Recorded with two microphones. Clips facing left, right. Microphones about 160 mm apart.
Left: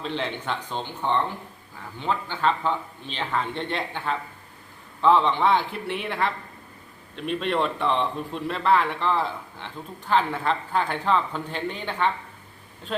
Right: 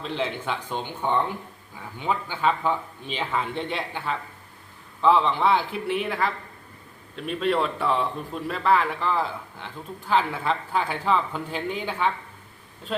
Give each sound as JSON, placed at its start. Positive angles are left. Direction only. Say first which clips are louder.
{"t": 0.0, "sound": "a man's voice", "louder": "right 1 dB", "side_deg": -5}